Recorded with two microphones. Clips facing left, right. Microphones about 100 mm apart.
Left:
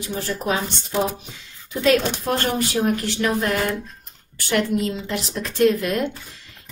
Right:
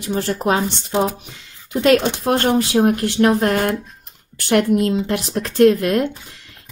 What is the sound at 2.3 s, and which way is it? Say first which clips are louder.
Speech: right 8 dB; 55° right (ahead or behind).